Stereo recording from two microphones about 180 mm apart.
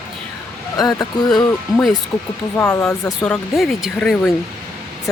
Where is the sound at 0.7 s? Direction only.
20° left (ahead or behind).